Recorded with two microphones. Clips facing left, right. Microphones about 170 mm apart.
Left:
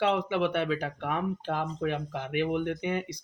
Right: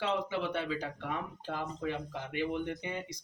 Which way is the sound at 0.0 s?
70° left (ahead or behind).